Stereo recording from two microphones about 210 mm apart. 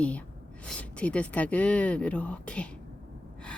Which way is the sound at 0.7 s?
5° left (ahead or behind).